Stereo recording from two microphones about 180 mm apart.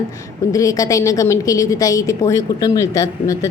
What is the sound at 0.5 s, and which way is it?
A woman's voice, 20° left (ahead or behind).